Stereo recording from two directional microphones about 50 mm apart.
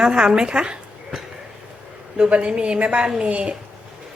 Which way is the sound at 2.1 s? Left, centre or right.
Right.